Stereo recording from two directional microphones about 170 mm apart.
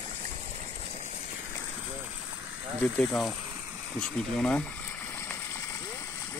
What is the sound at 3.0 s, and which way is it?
Speech, 5° left (ahead or behind).